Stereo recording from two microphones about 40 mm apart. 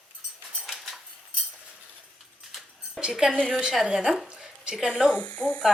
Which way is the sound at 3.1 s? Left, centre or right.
Centre.